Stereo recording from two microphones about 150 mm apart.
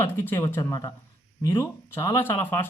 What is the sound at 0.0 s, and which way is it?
Speech, 15° left (ahead or behind).